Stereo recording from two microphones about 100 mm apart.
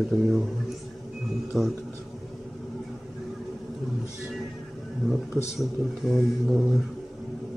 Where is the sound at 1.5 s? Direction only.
5° right (ahead or behind).